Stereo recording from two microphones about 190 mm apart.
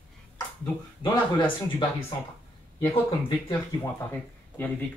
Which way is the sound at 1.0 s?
25° left (ahead or behind).